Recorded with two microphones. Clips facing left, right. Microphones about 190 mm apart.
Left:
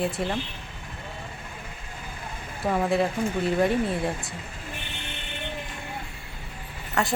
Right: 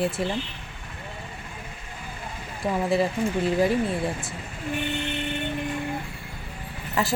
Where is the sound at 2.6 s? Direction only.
Centre (ahead or behind).